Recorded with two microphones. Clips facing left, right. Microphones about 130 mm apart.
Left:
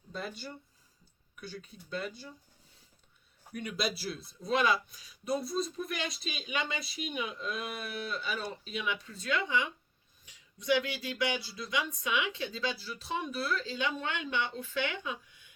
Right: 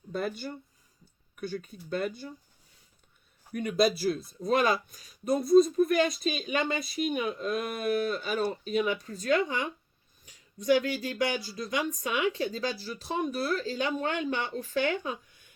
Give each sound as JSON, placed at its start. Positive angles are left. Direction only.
{"t": 0.1, "sound": "speech", "side_deg": -50}
{"t": 3.5, "sound": "speech", "side_deg": -45}